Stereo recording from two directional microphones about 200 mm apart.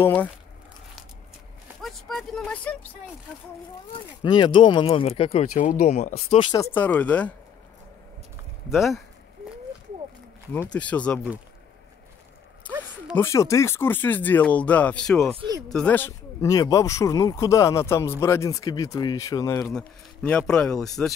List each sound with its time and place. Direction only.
0.0 s speech: 10° left (ahead or behind)
1.8 s a sound: centre (ahead or behind)
3.9 s speech: 25° left (ahead or behind)
6.5 s speech: 10° left (ahead or behind)
8.6 s speech: centre (ahead or behind)
10.5 s speech: 10° left (ahead or behind)
13.1 s speech: 15° left (ahead or behind)
15.3 s speech: 20° right (ahead or behind)
15.7 s speech: 5° left (ahead or behind)